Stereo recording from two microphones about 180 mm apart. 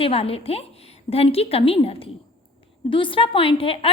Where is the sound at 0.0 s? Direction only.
30° left (ahead or behind).